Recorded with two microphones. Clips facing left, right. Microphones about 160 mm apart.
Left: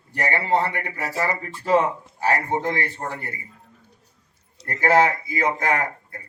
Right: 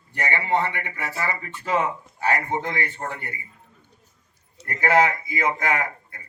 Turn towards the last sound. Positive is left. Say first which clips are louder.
# left 2 dB
turn(degrees=40)  # may be behind; listen again after turning